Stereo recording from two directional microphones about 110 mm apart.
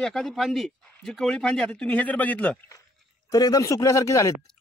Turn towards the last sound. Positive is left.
turn(degrees=30)  # may be behind; listen again after turning